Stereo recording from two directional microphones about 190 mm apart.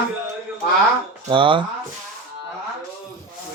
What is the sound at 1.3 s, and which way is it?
Speech, 25° right (ahead or behind).